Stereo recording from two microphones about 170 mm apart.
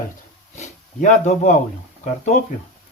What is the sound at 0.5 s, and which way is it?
Speech, 45° left (ahead or behind).